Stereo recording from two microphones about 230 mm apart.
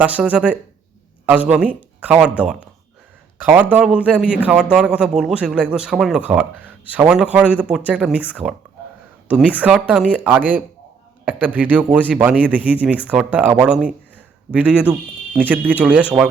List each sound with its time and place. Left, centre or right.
0.0 s a man's voice: centre